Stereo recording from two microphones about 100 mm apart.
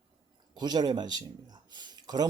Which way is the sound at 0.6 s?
45° right (ahead or behind).